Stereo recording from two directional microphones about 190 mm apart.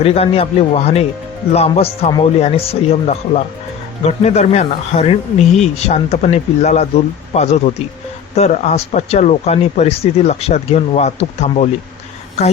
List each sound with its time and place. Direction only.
0.0 s speech: 30° left (ahead or behind)